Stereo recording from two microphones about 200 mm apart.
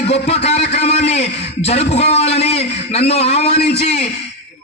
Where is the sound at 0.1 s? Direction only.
35° left (ahead or behind).